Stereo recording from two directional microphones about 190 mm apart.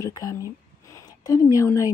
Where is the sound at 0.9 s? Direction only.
20° left (ahead or behind).